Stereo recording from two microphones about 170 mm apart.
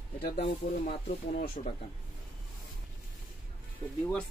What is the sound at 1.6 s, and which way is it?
Speech, 45° left (ahead or behind).